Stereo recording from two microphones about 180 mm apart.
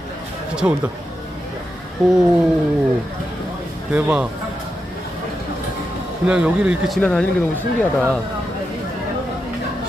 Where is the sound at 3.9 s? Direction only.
5° right (ahead or behind).